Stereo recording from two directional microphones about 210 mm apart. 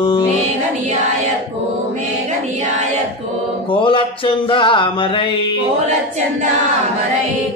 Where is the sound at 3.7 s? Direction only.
25° left (ahead or behind).